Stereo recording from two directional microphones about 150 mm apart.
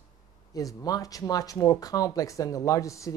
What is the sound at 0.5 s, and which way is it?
Speech, 25° left (ahead or behind).